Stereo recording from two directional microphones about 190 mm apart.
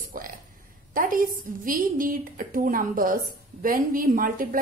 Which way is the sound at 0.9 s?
45° right (ahead or behind).